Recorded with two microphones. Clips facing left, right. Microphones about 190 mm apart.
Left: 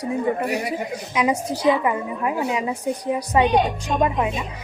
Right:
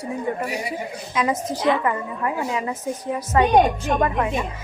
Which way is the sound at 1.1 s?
15° left (ahead or behind).